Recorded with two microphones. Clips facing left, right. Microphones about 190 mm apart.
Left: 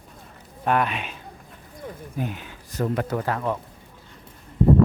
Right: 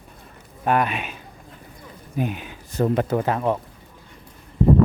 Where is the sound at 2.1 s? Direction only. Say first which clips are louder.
Right 6 dB; 15° right (ahead or behind).